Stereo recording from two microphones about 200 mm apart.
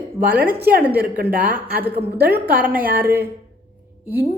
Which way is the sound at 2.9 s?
10° right (ahead or behind).